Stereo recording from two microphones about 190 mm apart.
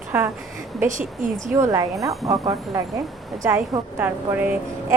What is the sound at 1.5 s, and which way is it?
A woman's voice, 15° right (ahead or behind).